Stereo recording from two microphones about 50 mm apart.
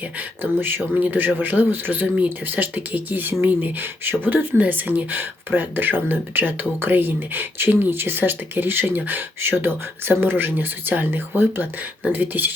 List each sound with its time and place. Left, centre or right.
0.2 s speech: right
9.4 s speech: right